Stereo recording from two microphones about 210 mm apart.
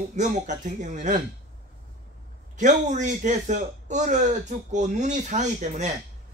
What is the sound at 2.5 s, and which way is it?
A man's voice, 35° right (ahead or behind).